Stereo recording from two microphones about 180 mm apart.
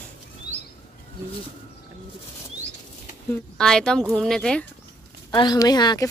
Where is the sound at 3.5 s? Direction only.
5° left (ahead or behind).